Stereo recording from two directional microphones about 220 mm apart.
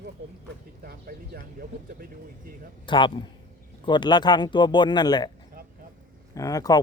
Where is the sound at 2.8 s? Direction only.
20° left (ahead or behind).